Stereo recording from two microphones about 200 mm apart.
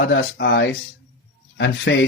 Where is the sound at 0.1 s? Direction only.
55° left (ahead or behind).